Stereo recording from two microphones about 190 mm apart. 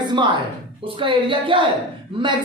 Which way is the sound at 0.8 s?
25° right (ahead or behind).